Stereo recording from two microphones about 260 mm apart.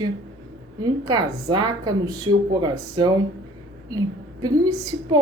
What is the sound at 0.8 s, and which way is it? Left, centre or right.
A woman's voice, centre.